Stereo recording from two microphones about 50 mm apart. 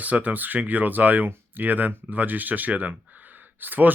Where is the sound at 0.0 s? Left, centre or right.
Right.